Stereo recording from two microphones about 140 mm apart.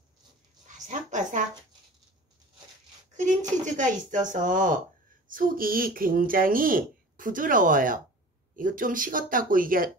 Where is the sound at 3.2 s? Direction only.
60° right (ahead or behind).